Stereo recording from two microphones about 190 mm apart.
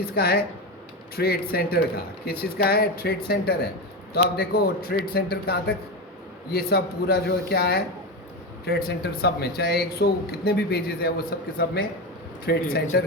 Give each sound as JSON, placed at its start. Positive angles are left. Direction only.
{"t": 0.1, "sound": "speech", "side_deg": 55}